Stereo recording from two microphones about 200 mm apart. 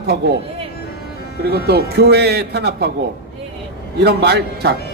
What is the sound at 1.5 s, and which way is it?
A man's voice, 55° right (ahead or behind).